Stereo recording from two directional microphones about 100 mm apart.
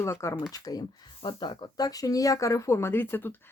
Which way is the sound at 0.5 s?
40° left (ahead or behind).